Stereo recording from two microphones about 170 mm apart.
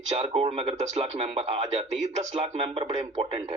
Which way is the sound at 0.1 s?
35° right (ahead or behind).